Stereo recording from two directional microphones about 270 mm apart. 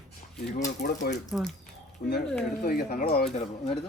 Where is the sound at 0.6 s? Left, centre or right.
Left.